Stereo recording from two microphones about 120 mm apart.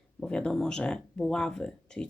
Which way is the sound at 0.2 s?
5° left (ahead or behind).